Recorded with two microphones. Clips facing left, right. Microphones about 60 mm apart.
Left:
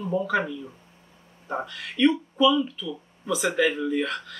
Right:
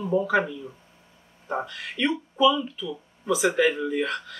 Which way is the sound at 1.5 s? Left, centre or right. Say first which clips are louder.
Right 1 dB; centre.